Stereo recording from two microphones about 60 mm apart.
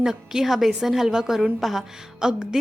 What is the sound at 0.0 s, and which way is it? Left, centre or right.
A woman's voice, centre.